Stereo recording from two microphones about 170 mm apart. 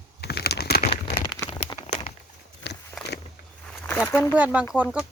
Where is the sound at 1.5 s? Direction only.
30° left (ahead or behind).